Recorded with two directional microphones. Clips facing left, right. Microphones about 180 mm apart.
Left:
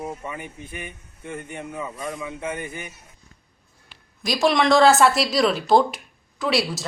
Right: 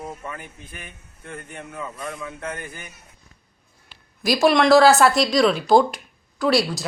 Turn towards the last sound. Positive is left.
turn(degrees=0)  # may be behind; listen again after turning